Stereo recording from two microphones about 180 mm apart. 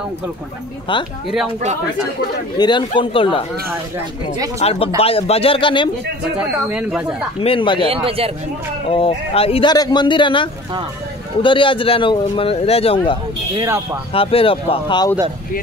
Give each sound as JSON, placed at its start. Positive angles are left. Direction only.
{"t": 2.5, "sound": "a man's voice", "side_deg": 25}
{"t": 4.6, "sound": "speech", "side_deg": 35}
{"t": 6.3, "sound": "speech", "side_deg": -5}
{"t": 7.3, "sound": "a man's voice", "side_deg": 30}
{"t": 7.8, "sound": "a man's voice", "side_deg": -30}
{"t": 8.9, "sound": "a man's voice", "side_deg": 30}